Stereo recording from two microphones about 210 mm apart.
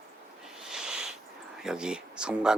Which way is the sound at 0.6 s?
Centre (ahead or behind).